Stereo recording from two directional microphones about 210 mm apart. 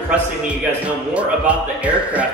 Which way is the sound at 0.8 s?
5° right (ahead or behind).